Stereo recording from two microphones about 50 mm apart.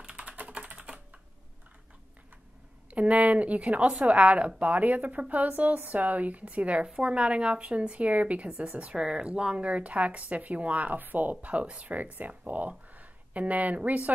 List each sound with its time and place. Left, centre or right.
0.0 s typing: right
2.9 s a woman's voice: right